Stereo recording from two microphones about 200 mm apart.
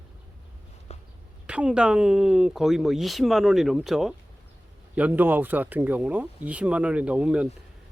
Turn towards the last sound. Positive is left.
turn(degrees=-5)  # may be behind; listen again after turning